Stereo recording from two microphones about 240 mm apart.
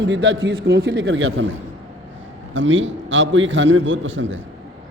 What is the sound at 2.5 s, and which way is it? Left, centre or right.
A man's voice, right.